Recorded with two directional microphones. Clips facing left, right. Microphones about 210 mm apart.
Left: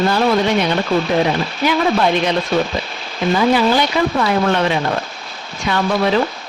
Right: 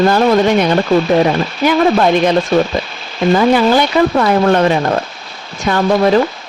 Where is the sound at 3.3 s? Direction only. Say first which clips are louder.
Right 3 dB; 50° right (ahead or behind).